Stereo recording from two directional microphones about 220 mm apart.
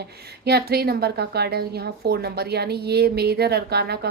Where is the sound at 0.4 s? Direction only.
45° right (ahead or behind).